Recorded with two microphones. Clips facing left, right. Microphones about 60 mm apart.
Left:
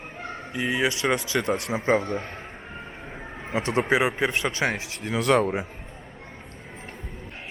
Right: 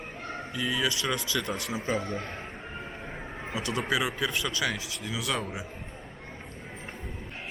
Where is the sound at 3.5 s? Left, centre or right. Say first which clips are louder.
Left 7 dB; left.